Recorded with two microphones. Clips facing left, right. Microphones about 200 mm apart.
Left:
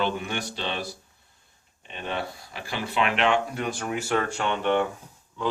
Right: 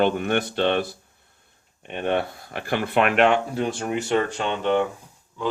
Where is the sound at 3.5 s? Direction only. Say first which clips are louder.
Right 4 dB; 30° right (ahead or behind).